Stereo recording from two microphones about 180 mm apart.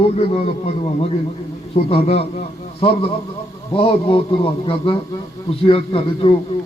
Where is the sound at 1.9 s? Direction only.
35° left (ahead or behind).